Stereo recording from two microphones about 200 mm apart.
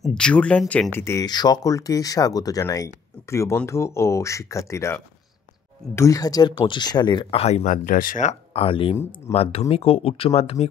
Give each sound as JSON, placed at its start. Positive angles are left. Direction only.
{"t": 0.0, "sound": "speech", "side_deg": 5}